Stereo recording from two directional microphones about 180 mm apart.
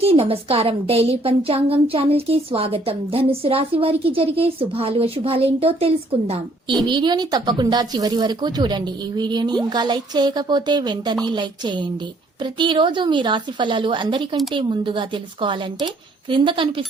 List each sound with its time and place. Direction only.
0.0 s a woman's voice: 35° right (ahead or behind)